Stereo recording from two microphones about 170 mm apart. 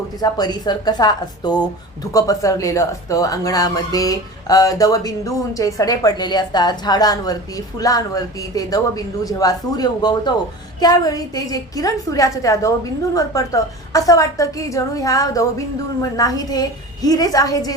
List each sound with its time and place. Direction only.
0.2 s speech: 25° left (ahead or behind)